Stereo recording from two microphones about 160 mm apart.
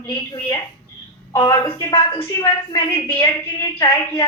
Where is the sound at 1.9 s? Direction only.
30° left (ahead or behind).